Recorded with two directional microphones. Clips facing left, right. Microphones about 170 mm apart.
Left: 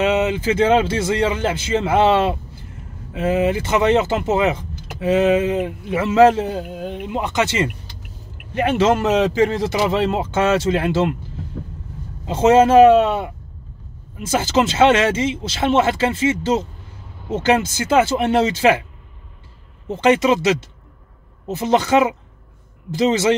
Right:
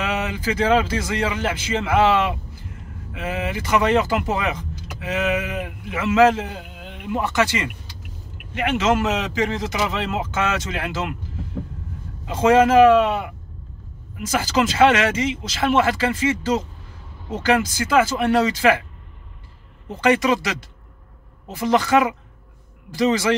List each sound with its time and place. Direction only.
0.0 s speech: 25° left (ahead or behind)
7.1 s speech: 20° left (ahead or behind)
12.3 s speech: 25° left (ahead or behind)
19.9 s speech: 20° left (ahead or behind)